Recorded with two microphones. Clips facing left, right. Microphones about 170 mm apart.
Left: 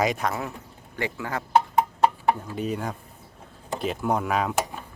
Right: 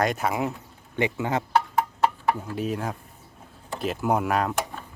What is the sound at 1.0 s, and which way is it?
Speech, 20° right (ahead or behind).